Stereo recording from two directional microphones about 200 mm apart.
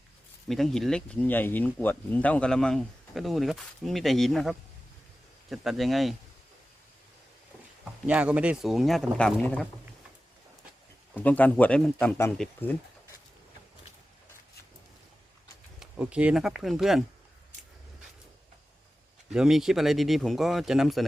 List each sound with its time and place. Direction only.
0.4 s speech: centre (ahead or behind)
8.0 s speech: 5° right (ahead or behind)
11.2 s speech: 5° left (ahead or behind)
15.8 s speech: 5° right (ahead or behind)
19.3 s speech: 5° right (ahead or behind)